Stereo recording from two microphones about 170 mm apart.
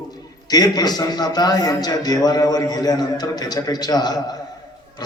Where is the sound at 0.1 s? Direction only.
20° left (ahead or behind).